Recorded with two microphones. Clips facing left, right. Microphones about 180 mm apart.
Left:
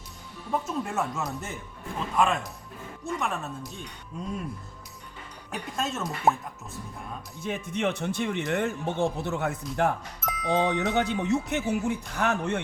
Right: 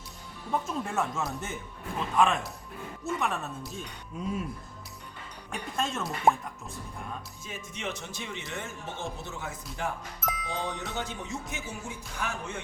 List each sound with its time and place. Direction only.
0.7 s speech: centre (ahead or behind)
5.5 s speech: 5° left (ahead or behind)
7.4 s a man's voice: 60° left (ahead or behind)
10.2 s doorbell: centre (ahead or behind)
10.5 s a man's voice: 65° left (ahead or behind)